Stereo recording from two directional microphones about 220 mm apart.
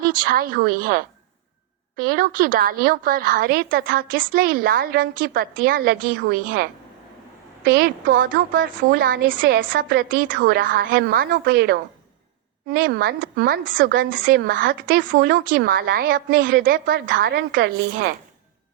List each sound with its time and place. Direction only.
0.0 s a woman's voice: 40° right (ahead or behind)